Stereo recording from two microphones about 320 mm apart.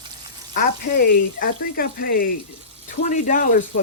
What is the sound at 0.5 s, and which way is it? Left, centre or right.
Speech, left.